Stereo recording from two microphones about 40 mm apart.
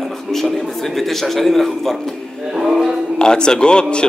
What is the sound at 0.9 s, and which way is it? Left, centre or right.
A man's voice, centre.